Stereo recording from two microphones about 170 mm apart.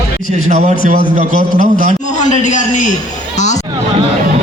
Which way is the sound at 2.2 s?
45° left (ahead or behind).